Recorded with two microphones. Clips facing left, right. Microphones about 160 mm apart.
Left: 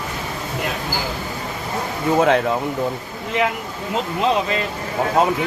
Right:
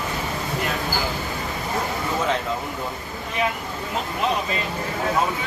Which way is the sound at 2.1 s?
65° left (ahead or behind).